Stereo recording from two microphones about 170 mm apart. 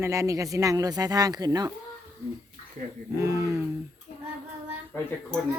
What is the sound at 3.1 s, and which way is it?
Speech, 20° right (ahead or behind).